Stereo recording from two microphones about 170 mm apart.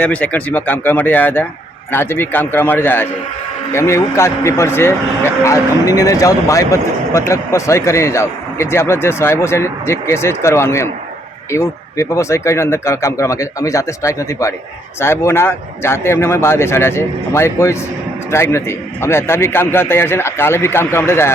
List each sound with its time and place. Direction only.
0.0 s a man's voice: 10° left (ahead or behind)